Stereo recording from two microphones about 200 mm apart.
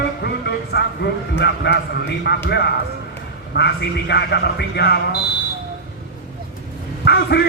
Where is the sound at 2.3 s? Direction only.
55° left (ahead or behind).